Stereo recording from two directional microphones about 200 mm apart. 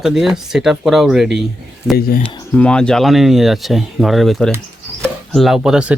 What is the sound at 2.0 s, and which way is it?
Speech, 50° left (ahead or behind).